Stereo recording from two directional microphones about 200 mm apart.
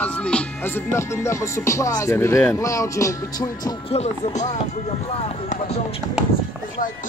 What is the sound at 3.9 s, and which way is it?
Speech, 35° left (ahead or behind).